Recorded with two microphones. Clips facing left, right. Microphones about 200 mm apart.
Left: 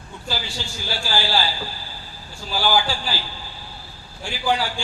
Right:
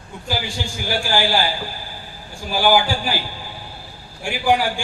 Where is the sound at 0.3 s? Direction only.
15° right (ahead or behind).